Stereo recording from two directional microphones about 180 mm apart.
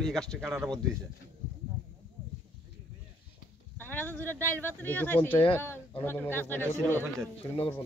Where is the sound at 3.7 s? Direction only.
10° left (ahead or behind).